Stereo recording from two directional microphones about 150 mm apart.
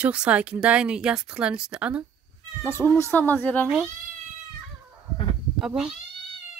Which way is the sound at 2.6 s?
15° left (ahead or behind).